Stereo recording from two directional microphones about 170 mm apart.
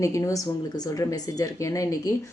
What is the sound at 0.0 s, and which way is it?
Speech, 20° left (ahead or behind).